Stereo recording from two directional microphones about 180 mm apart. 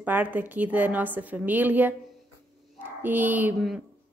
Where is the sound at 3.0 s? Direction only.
10° right (ahead or behind).